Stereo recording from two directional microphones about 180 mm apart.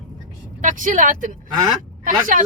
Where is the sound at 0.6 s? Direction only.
45° right (ahead or behind).